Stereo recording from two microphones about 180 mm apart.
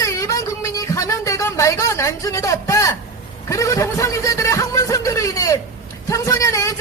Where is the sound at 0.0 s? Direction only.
15° left (ahead or behind).